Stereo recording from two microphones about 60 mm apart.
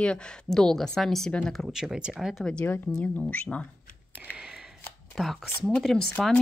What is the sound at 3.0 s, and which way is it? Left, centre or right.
Speech, left.